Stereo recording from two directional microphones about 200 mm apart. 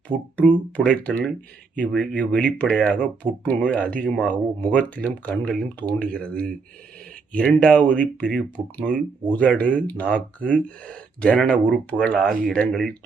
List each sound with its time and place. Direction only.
0.1 s speech: 25° right (ahead or behind)
0.8 s speech: 5° left (ahead or behind)